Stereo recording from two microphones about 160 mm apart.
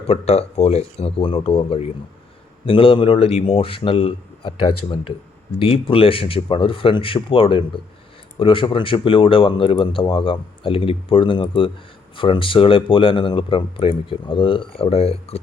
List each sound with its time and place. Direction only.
0.1 s speech: 40° left (ahead or behind)